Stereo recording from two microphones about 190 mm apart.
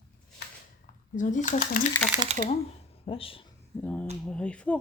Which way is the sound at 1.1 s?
40° left (ahead or behind).